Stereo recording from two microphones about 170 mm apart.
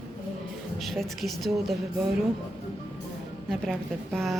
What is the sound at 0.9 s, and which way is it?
Speech, centre (ahead or behind).